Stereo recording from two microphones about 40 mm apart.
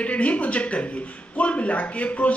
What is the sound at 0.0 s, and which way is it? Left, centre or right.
Speech, left.